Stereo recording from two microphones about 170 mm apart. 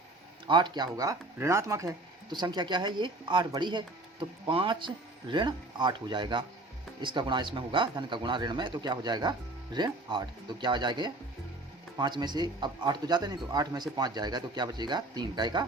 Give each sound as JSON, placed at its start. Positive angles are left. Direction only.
{"t": 0.4, "sound": "speech", "side_deg": -25}